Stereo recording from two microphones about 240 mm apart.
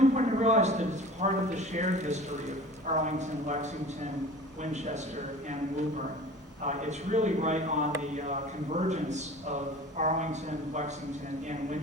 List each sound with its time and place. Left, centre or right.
0.2 s a man's voice: right
6.7 s a man's voice: right